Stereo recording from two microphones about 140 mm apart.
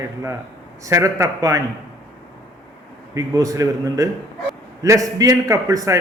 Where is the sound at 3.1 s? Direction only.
25° right (ahead or behind).